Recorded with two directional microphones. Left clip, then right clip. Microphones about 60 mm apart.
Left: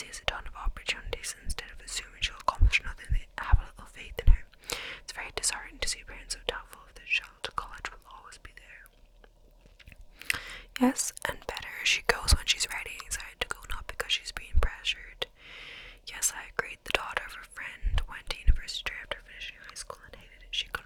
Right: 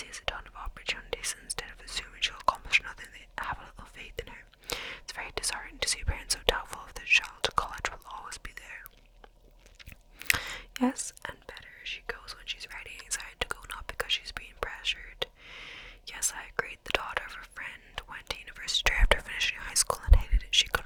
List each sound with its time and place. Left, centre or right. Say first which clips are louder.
0.0 s whispering: left 2 dB; centre
1.1 s whispering: right 2 dB; centre
5.8 s whispering: right 6 dB; right
10.2 s a sound: right 4 dB; right
10.8 s whispering: left 3 dB; centre
11.4 s whispering: left 8 dB; left
11.7 s whispering: left 12 dB; left
13.1 s whispering: even; centre
18.5 s whispering: right 7 dB; right
18.9 s whispering: right 10 dB; right